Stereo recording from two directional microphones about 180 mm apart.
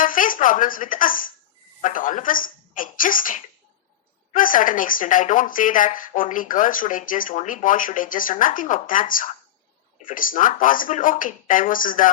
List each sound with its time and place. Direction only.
0.0 s a woman's voice: 50° left (ahead or behind)